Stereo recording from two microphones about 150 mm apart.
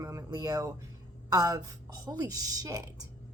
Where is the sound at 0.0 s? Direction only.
20° right (ahead or behind).